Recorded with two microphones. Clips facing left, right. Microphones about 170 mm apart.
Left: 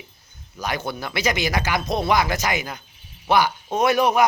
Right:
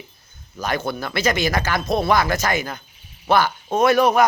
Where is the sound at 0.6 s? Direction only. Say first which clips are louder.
Right 3 dB; 15° left (ahead or behind).